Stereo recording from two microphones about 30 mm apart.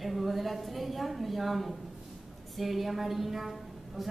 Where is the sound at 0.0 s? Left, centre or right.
Centre.